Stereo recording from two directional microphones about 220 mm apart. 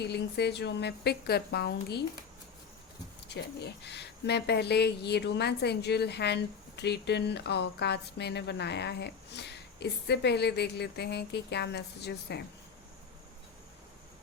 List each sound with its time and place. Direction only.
0.0 s speech: 50° left (ahead or behind)
3.2 s speech: 50° left (ahead or behind)